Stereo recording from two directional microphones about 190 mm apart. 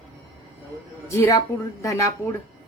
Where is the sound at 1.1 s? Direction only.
15° left (ahead or behind).